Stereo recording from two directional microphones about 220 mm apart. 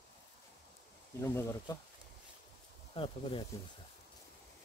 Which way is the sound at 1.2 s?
10° left (ahead or behind).